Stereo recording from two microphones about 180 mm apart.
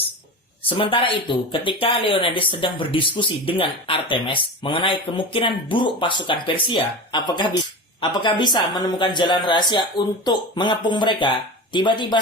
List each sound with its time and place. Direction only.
0.7 s speech: 30° left (ahead or behind)